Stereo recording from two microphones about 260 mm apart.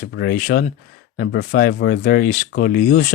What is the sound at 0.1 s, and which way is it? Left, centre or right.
Speech, left.